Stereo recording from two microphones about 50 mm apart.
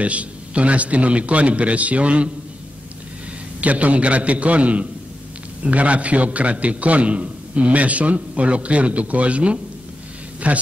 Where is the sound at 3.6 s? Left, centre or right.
Right.